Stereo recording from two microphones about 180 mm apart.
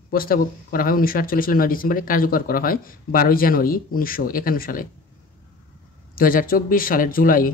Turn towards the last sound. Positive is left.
turn(degrees=50)  # may be behind; listen again after turning